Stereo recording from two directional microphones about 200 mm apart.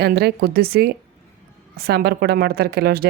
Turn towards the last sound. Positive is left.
turn(degrees=-50)  # may be behind; listen again after turning